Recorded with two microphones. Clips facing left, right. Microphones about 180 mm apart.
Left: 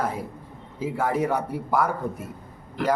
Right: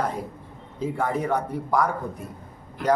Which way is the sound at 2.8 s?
70° left (ahead or behind).